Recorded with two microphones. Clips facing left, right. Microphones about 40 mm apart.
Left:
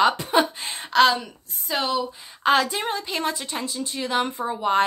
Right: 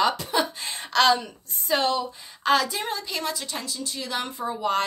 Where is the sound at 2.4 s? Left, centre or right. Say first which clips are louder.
Left 2 dB; left.